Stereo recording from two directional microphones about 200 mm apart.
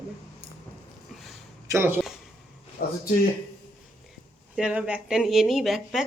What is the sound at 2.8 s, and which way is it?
Speech, 50° left (ahead or behind).